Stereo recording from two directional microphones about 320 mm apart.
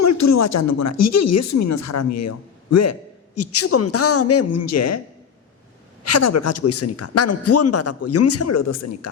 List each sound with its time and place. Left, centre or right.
0.0 s a man's voice: left
6.0 s a man's voice: left